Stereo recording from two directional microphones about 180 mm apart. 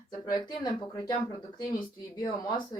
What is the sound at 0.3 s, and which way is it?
Speech, 20° left (ahead or behind).